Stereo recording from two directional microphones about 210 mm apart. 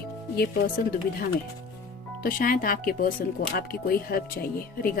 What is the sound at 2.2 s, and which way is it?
Speech, 40° left (ahead or behind).